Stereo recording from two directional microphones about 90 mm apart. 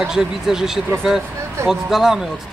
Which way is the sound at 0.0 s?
5° right (ahead or behind).